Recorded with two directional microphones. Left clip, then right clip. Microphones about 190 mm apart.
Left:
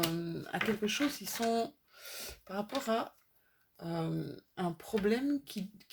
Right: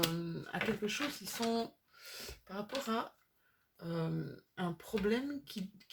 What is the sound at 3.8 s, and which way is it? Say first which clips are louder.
Speech: left 3 dB; 35° left (ahead or behind).